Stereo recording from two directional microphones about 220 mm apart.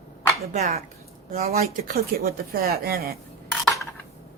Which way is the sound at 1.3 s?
45° right (ahead or behind).